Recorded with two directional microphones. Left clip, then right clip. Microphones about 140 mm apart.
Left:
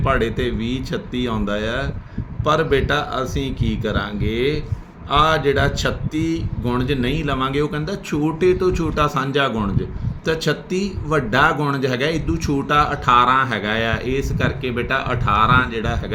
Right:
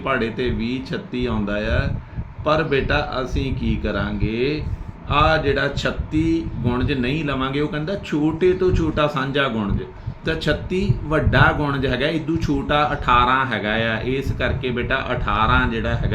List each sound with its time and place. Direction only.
0.0 s speech: 50° left (ahead or behind)